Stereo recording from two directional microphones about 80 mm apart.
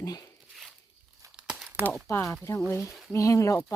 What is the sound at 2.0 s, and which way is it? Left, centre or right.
Speech, left.